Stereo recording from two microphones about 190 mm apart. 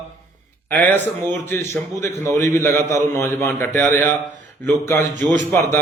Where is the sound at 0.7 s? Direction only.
10° left (ahead or behind).